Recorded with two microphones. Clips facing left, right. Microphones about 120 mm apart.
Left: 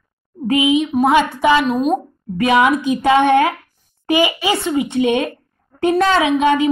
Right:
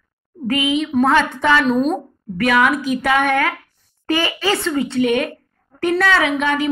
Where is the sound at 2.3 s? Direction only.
20° left (ahead or behind).